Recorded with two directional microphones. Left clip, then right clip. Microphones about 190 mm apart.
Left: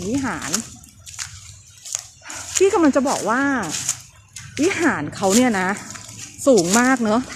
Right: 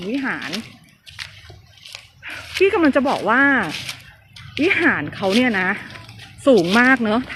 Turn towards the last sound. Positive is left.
turn(degrees=15)  # may be behind; listen again after turning